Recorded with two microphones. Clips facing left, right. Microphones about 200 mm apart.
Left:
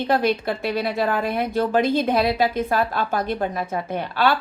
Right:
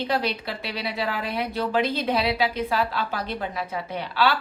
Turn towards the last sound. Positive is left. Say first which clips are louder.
# left 3 dB
turn(degrees=50)  # may be behind; listen again after turning